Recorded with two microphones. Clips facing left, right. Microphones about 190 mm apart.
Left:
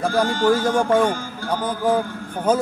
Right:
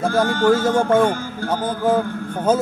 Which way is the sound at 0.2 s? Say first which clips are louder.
Right 2 dB; 55° right (ahead or behind).